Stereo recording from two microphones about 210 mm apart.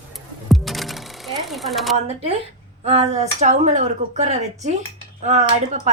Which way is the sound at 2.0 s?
30° right (ahead or behind).